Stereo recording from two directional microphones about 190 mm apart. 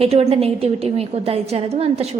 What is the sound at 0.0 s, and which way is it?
A woman's voice, 30° right (ahead or behind).